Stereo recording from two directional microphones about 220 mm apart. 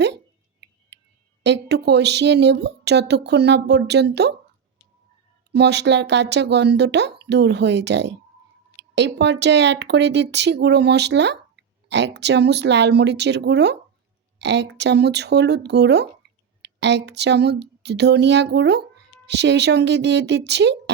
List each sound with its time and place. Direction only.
1.5 s speech: 50° right (ahead or behind)
5.5 s speech: 50° right (ahead or behind)